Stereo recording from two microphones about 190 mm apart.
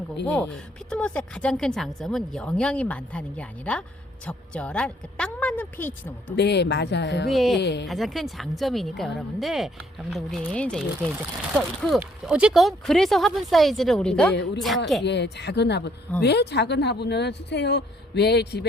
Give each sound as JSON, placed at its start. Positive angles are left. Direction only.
{"t": 0.3, "sound": "a woman's voice", "side_deg": 5}
{"t": 6.3, "sound": "speech", "side_deg": 60}
{"t": 7.3, "sound": "a woman's voice", "side_deg": 0}
{"t": 7.6, "sound": "speech", "side_deg": 65}
{"t": 7.9, "sound": "a woman's voice", "side_deg": 0}
{"t": 14.3, "sound": "speech", "side_deg": 65}